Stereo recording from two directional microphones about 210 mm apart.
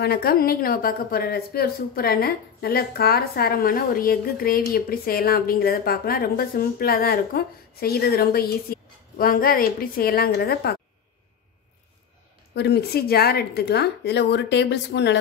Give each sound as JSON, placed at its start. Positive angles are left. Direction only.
{"t": 0.0, "sound": "a woman's voice", "side_deg": 45}
{"t": 12.5, "sound": "a woman's voice", "side_deg": 50}